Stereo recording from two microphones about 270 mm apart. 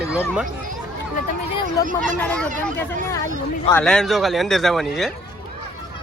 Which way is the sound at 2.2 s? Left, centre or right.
Centre.